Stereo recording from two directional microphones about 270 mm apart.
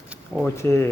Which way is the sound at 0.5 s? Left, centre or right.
Centre.